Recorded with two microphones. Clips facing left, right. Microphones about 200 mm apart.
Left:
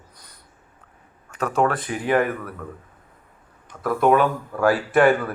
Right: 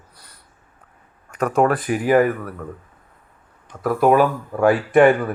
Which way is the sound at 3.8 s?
5° right (ahead or behind).